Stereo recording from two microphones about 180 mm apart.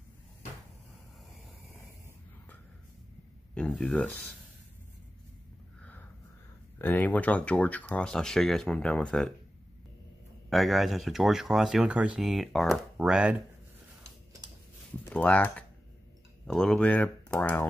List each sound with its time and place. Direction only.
3.5 s speech: 5° left (ahead or behind)
5.8 s a sound: 10° left (ahead or behind)
6.8 s speech: 10° left (ahead or behind)
10.5 s speech: centre (ahead or behind)
15.0 s speech: 5° left (ahead or behind)